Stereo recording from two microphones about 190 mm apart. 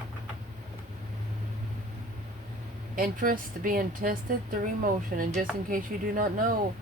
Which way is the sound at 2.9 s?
45° right (ahead or behind).